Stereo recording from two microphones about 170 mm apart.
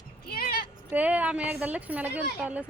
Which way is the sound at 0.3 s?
60° left (ahead or behind).